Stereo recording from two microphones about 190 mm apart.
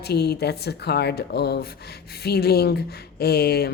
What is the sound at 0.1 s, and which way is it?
A woman's voice, 60° left (ahead or behind).